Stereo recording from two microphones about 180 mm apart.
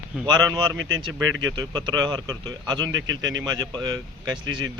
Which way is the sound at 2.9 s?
90° right.